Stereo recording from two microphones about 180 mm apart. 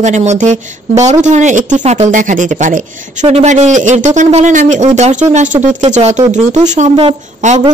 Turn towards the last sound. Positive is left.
turn(degrees=-40)  # may be behind; listen again after turning